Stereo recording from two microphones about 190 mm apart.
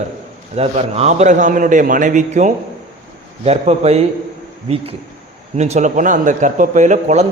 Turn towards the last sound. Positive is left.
turn(degrees=-40)  # may be behind; listen again after turning